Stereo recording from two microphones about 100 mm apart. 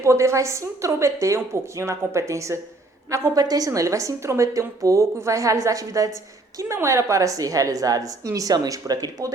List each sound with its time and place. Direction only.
0.0 s a woman's voice: 30° right (ahead or behind)
3.1 s a woman's voice: 40° right (ahead or behind)